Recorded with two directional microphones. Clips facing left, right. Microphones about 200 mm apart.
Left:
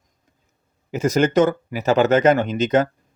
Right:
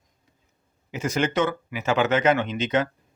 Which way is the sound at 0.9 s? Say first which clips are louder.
Left 7 dB; 40° left (ahead or behind).